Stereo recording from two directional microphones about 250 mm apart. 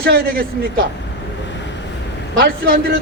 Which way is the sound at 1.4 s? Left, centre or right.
Left.